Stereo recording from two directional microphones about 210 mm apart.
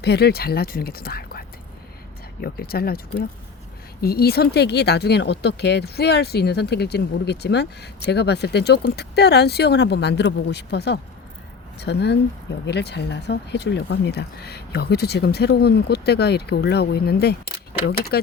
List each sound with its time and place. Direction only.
0.0 s speech: 50° left (ahead or behind)
4.0 s speech: 50° left (ahead or behind)